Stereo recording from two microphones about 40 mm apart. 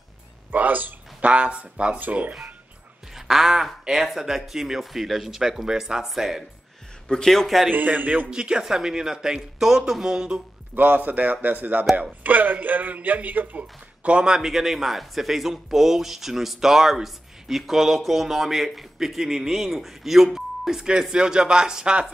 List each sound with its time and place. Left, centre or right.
0.5 s a sound: right
1.3 s speech: right
2.0 s speech: right
3.2 s speech: centre
3.8 s speech: centre
4.1 s speech: centre
7.2 s a man's voice: centre
7.7 s speech: right
8.3 s speech: right
10.7 s speech: right
14.0 s speech: right
14.4 s speech: centre
21.1 s speech: right